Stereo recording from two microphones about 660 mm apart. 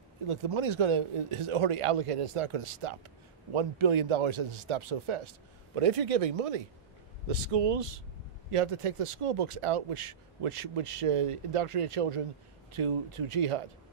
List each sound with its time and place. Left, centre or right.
0.3 s speech: right